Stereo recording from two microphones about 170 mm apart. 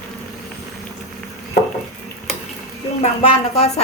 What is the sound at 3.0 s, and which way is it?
Speech, 35° left (ahead or behind).